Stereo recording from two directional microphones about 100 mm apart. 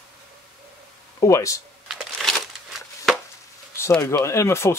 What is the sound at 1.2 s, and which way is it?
Speech, 30° left (ahead or behind).